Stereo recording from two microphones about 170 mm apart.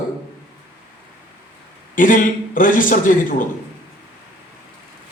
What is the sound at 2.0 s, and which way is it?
A man's voice, 50° left (ahead or behind).